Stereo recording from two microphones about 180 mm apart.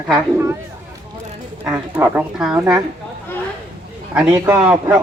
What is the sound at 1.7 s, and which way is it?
Speech, 10° right (ahead or behind).